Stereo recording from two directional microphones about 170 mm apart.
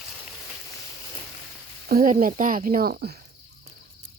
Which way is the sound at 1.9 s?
55° right (ahead or behind).